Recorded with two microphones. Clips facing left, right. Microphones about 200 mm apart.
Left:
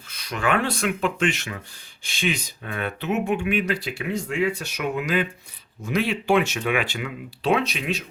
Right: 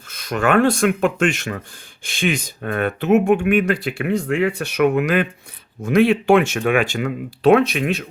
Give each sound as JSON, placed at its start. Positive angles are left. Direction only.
{"t": 0.1, "sound": "speech", "side_deg": -50}